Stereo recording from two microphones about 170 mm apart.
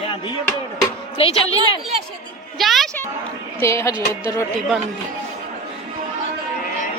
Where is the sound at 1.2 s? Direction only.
35° left (ahead or behind).